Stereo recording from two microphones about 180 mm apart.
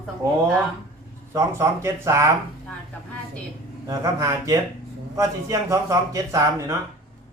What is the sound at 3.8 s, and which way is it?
Speech, 20° right (ahead or behind).